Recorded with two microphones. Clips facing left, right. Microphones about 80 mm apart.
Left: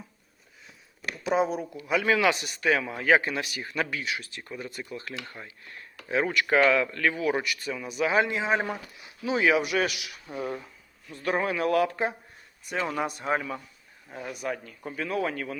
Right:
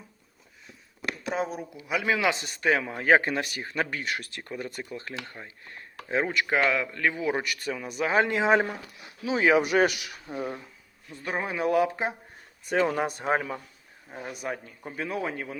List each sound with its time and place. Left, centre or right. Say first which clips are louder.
1.3 s speech: left 6 dB; centre
1.7 s a man's voice: left 1 dB; centre; by 4.8 s right
4.8 s speech: right 1 dB; right; by 7.4 s centre
7.4 s speech: right 1 dB; right
8.3 s speech: right 4 dB; right
9.2 s a man's voice: even; centre
9.5 s speech: right 6 dB; right
10.3 s a man's voice: left 1 dB; centre
12.9 s speech: right 2 dB; right
14.1 s speech: left 1 dB; right